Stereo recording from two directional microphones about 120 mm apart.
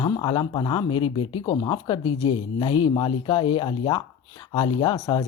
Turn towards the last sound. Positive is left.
turn(degrees=30)  # may be behind; listen again after turning